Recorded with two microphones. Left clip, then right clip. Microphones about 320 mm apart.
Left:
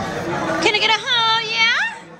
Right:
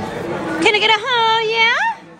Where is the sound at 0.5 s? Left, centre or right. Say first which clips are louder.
Right 4 dB; right.